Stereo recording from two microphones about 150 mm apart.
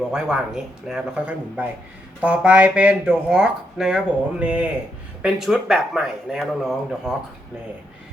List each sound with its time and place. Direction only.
0.0 s speech: 5° right (ahead or behind)